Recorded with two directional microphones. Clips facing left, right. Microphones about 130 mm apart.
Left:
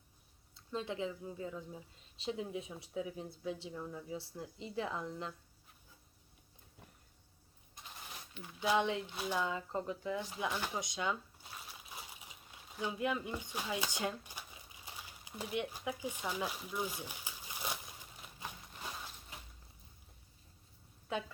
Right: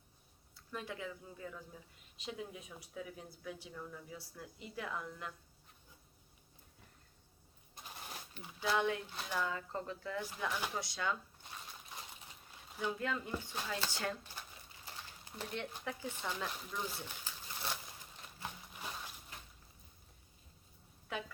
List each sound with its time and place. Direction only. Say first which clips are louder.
0.5 s speech: left 5 dB; 25° left (ahead or behind)
8.4 s speech: left 2 dB; 20° left (ahead or behind)
11.4 s crumpling: even; 5° left (ahead or behind)
12.8 s speech: left 2 dB; 15° left (ahead or behind)